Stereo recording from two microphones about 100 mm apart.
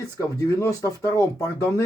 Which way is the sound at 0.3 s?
35° left (ahead or behind).